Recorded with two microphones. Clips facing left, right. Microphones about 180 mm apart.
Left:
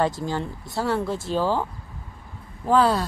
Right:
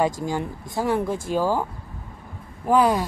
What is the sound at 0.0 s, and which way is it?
Speech, 15° right (ahead or behind).